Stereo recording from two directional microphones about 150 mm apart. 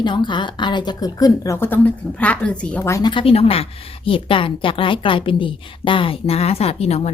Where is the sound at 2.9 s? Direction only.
25° left (ahead or behind).